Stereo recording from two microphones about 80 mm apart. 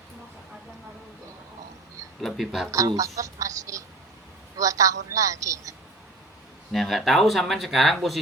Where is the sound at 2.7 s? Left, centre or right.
Right.